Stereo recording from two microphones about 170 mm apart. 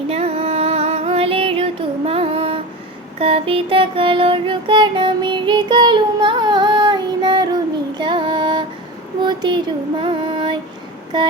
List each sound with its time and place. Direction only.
0.1 s music: 35° right (ahead or behind)
9.2 s a sound: 25° right (ahead or behind)
10.0 s music: 30° right (ahead or behind)